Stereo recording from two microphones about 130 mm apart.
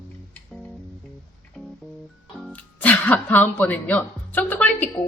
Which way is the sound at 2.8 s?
10° left (ahead or behind).